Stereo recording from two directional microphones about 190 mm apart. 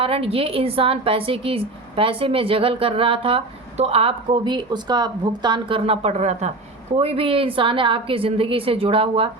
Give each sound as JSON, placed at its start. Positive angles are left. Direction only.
{"t": 0.0, "sound": "a woman's voice", "side_deg": -30}